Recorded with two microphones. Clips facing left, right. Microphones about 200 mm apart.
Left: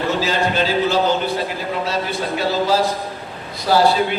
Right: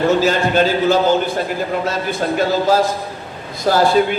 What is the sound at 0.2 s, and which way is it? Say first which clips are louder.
A man's voice: right 4 dB; 50° right (ahead or behind).